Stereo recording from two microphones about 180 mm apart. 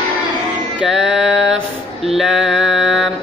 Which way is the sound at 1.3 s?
90° right.